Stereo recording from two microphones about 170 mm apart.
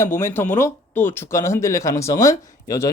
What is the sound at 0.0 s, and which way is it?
Speech, 15° left (ahead or behind).